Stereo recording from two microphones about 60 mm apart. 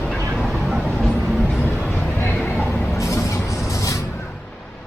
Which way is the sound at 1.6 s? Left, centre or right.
Left.